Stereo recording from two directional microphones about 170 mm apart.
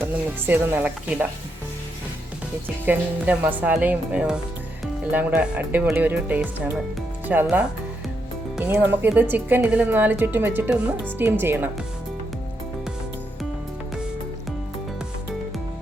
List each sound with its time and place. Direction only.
0.0 s speech: 15° right (ahead or behind)
2.8 s speech: 10° right (ahead or behind)